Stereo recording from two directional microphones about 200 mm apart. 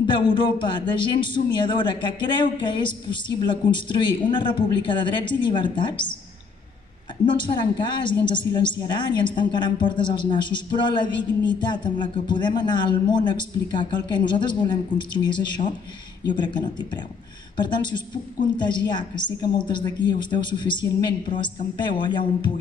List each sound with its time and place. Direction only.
0.0 s a woman's voice: 25° left (ahead or behind)
7.2 s a woman's voice: 20° left (ahead or behind)